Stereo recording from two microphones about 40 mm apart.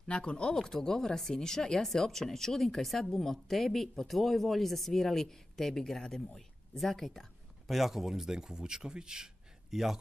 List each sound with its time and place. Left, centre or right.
0.0 s speech: left
0.6 s a woman's voice: centre
7.7 s a man's voice: centre